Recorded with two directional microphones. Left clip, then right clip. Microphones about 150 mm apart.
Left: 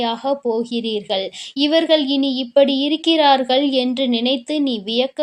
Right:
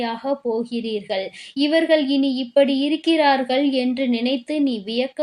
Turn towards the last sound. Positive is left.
turn(degrees=25)  # may be behind; listen again after turning